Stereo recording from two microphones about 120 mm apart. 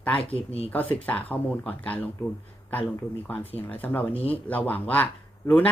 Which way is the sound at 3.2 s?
15° left (ahead or behind).